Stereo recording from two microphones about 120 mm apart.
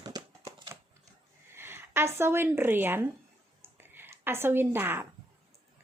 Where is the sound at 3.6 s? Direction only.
20° right (ahead or behind).